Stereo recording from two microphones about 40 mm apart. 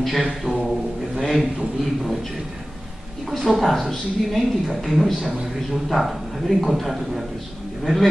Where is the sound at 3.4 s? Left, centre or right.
Centre.